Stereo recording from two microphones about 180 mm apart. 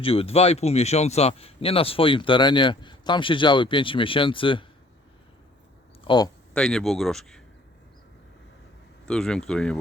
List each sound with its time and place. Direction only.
0.0 s speech: 30° left (ahead or behind)
6.1 s speech: 20° left (ahead or behind)
6.5 s speech: 5° left (ahead or behind)
9.0 s speech: 5° left (ahead or behind)